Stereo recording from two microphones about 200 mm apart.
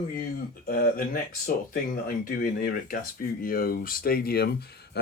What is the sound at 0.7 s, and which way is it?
Speech, 45° left (ahead or behind).